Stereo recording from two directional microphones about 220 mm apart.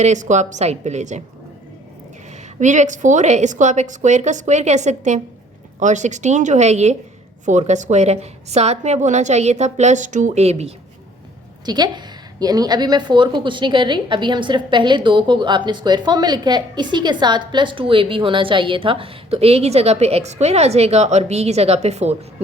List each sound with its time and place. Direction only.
0.0 s a woman's voice: 35° right (ahead or behind)
2.6 s a woman's voice: 35° right (ahead or behind)
11.6 s a woman's voice: 20° right (ahead or behind)